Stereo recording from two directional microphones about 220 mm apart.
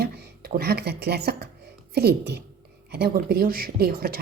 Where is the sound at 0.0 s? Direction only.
45° right (ahead or behind).